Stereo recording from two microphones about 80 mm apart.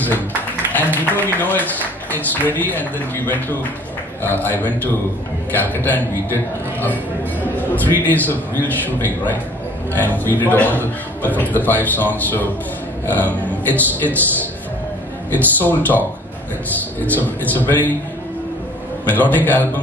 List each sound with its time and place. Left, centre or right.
0.7 s speech: left
7.7 s speech: left
19.0 s speech: left